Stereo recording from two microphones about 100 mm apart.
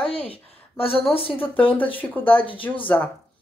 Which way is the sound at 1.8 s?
15° left (ahead or behind).